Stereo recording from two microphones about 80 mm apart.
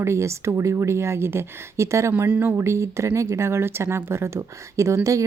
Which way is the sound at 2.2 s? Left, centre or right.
Centre.